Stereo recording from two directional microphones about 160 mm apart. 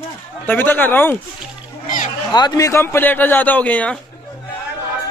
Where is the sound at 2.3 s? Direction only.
25° left (ahead or behind); by 4.0 s 10° left (ahead or behind).